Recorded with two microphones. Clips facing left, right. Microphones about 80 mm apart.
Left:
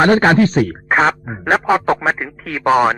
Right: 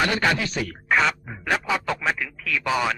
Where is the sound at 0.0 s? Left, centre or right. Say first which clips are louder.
Left 11 dB; left.